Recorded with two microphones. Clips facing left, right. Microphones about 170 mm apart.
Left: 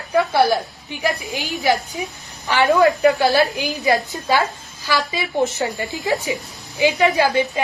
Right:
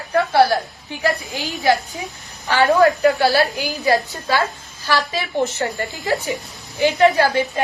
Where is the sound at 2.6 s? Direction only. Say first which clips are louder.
Even; 20° left (ahead or behind).